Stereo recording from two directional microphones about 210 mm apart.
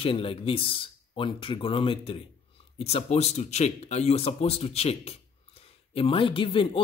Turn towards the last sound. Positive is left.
turn(degrees=25)  # may be behind; listen again after turning